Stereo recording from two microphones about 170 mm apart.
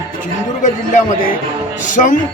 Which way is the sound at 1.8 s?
50° left (ahead or behind).